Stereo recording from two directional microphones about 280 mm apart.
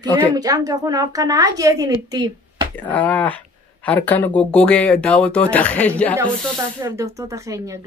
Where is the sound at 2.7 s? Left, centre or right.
Centre.